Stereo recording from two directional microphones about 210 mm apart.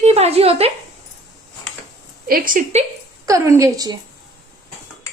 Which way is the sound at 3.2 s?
15° right (ahead or behind).